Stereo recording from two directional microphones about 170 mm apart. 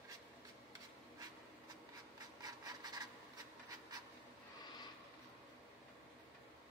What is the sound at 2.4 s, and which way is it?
Rub, 25° right (ahead or behind).